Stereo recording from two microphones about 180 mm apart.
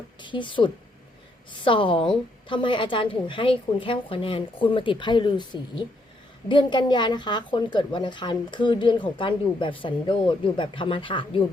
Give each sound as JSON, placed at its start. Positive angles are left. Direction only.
{"t": 0.2, "sound": "a woman's voice", "side_deg": 25}